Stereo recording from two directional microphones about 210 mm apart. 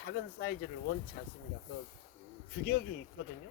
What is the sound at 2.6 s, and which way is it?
Speech, 45° left (ahead or behind).